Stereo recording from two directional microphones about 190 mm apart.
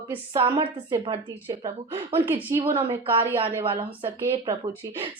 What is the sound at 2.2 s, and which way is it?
Speech, 10° right (ahead or behind).